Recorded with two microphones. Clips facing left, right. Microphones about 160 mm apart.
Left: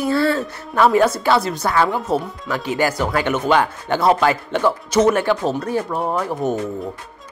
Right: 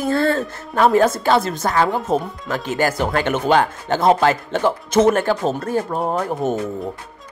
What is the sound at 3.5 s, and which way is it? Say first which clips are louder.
Speech: right 1 dB; 40° right (ahead or behind).